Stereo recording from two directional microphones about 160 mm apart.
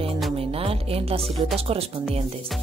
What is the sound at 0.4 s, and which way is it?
Music, 35° right (ahead or behind).